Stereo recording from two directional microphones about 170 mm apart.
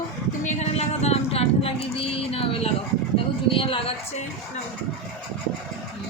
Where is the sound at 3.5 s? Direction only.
30° left (ahead or behind).